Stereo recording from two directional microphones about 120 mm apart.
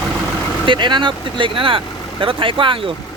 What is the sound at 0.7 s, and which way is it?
Speech, 40° right (ahead or behind).